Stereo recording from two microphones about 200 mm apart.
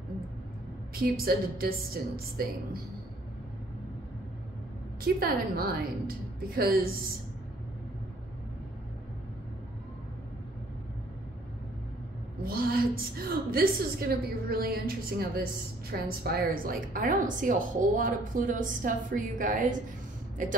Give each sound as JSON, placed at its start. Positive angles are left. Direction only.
{"t": 1.0, "sound": "a woman's voice", "side_deg": -50}
{"t": 5.0, "sound": "a woman's voice", "side_deg": -50}
{"t": 12.4, "sound": "a woman's voice", "side_deg": -50}